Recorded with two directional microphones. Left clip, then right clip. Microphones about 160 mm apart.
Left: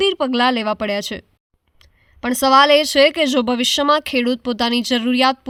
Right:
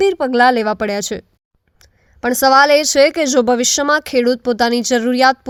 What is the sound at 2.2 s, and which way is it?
A woman's voice, 25° right (ahead or behind).